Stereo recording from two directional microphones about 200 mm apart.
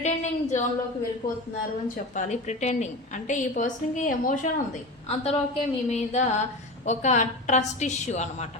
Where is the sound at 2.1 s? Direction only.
35° left (ahead or behind).